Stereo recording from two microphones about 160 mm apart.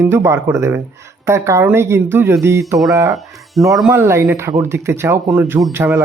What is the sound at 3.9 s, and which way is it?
Speech, 15° right (ahead or behind).